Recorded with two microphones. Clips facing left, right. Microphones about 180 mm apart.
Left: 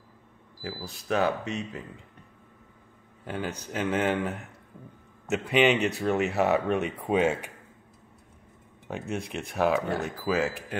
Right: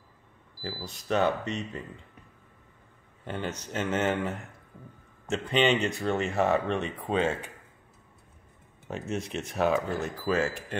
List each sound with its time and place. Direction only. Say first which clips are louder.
0.6 s speech: left 1 dB; centre (ahead or behind)
3.3 s speech: left 1 dB; 5° left (ahead or behind)
8.8 s speech: even; centre (ahead or behind)